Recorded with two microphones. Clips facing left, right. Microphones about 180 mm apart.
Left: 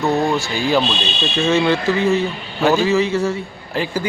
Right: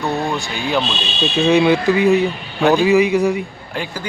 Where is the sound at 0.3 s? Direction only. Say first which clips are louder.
Left 3 dB; centre (ahead or behind).